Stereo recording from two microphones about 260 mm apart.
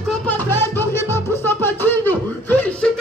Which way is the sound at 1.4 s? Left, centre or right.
Centre.